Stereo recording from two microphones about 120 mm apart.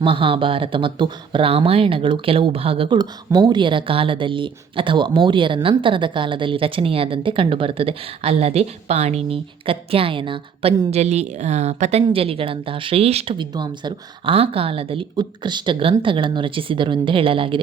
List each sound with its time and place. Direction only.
0.0 s speech: 45° right (ahead or behind)
10.9 s a woman's voice: 65° right (ahead or behind)
12.0 s speech: 50° right (ahead or behind)
13.3 s speech: 40° right (ahead or behind)
14.3 s speech: 55° right (ahead or behind)